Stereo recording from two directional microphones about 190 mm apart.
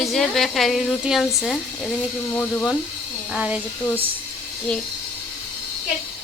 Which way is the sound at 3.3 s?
5° right (ahead or behind).